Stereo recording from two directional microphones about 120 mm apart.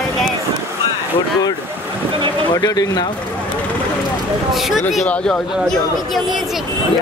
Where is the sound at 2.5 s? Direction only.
35° left (ahead or behind).